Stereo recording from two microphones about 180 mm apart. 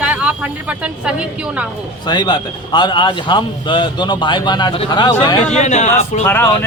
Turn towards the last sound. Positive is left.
turn(degrees=10)  # may be behind; listen again after turning